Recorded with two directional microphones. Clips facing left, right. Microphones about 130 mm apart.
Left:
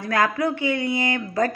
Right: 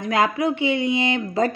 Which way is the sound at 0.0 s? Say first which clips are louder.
Right 1 dB; 20° right (ahead or behind).